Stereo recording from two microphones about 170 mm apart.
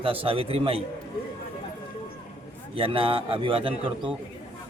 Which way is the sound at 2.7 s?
30° right (ahead or behind).